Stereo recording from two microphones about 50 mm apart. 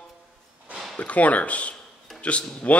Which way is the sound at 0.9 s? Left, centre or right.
Left.